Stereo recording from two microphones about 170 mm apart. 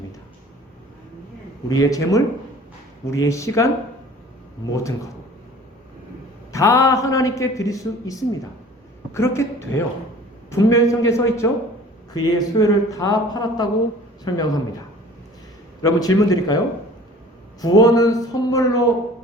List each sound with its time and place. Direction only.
1.8 s a man's voice: 20° left (ahead or behind)
4.7 s a man's voice: 20° left (ahead or behind)
6.5 s a man's voice: 15° left (ahead or behind)
15.8 s a man's voice: 20° left (ahead or behind)
17.6 s a man's voice: 20° left (ahead or behind)